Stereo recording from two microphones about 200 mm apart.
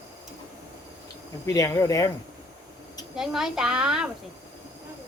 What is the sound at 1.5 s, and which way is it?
Speech, 15° left (ahead or behind).